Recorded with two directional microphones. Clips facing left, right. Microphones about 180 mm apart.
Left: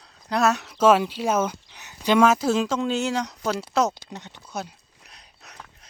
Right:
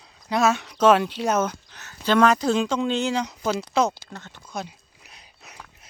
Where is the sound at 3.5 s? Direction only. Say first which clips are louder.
Even; 5° left (ahead or behind).